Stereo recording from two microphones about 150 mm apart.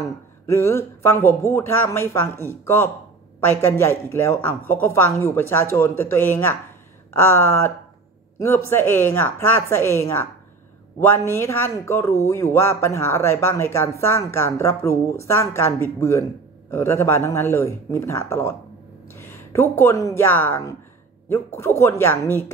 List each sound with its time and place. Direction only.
0.5 s a woman's voice: 15° left (ahead or behind)